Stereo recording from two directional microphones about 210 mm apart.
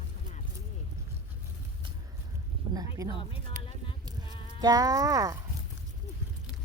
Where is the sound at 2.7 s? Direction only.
15° right (ahead or behind).